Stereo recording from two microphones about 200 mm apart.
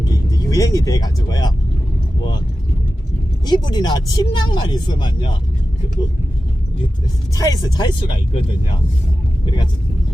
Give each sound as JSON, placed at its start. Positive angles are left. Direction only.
{"t": 0.0, "sound": "speech", "side_deg": 20}
{"t": 3.4, "sound": "speech", "side_deg": 20}
{"t": 7.3, "sound": "speech", "side_deg": 20}